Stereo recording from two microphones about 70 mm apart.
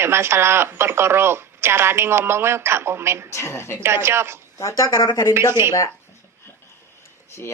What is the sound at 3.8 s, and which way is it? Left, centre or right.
Speech, right.